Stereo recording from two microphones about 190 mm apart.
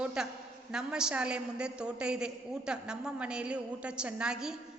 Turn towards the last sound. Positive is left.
turn(degrees=-5)  # may be behind; listen again after turning